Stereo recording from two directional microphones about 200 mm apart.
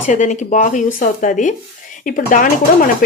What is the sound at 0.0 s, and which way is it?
Speech, 35° left (ahead or behind).